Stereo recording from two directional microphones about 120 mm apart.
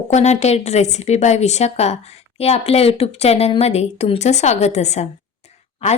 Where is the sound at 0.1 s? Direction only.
70° left (ahead or behind).